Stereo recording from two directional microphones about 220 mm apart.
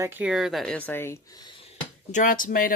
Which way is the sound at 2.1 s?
35° left (ahead or behind).